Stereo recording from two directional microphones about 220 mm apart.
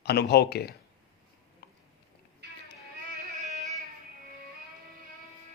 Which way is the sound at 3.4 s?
30° right (ahead or behind).